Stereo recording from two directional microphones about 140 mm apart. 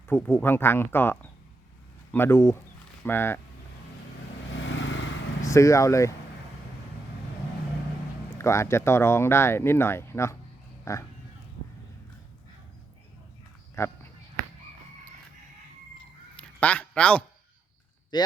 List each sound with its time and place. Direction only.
0.1 s speech: 15° left (ahead or behind)
5.4 s speech: 20° left (ahead or behind)
8.4 s speech: 20° left (ahead or behind)
13.8 s speech: 20° left (ahead or behind)
16.4 s a sound: 10° left (ahead or behind)
18.1 s speech: 30° left (ahead or behind)